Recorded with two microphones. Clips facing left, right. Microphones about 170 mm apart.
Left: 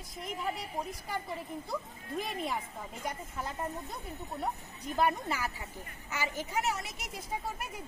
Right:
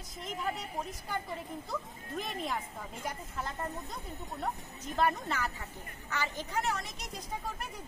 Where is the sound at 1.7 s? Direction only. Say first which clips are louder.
Left 2 dB; 5° left (ahead or behind).